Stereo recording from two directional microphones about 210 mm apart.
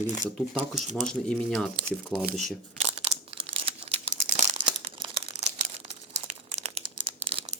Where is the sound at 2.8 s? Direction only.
30° right (ahead or behind).